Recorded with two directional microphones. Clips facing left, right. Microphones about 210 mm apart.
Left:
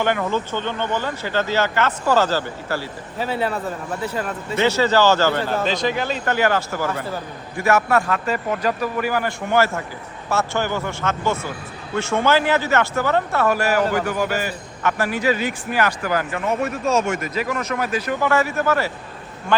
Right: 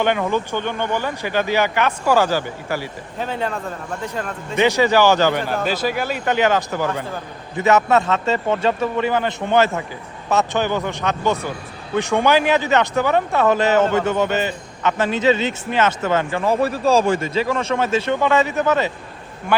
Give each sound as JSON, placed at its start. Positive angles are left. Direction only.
{"t": 0.0, "sound": "speech", "side_deg": -15}
{"t": 3.2, "sound": "speech", "side_deg": 5}
{"t": 4.5, "sound": "speech", "side_deg": -15}